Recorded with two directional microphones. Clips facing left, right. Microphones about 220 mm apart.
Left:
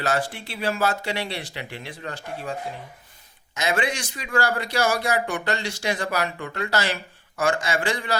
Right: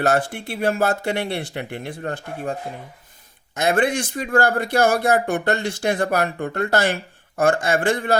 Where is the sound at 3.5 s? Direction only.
55° right (ahead or behind).